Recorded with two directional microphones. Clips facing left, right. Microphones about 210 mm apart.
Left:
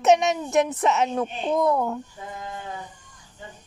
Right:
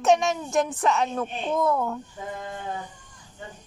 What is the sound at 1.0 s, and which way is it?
Speech, 15° left (ahead or behind).